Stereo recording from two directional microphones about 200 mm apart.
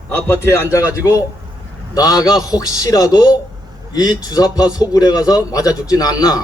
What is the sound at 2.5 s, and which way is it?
A man's voice, 15° left (ahead or behind).